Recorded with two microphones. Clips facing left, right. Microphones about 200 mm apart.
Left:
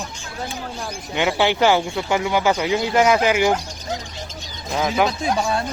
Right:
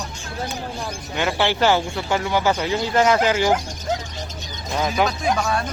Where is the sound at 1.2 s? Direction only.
15° left (ahead or behind).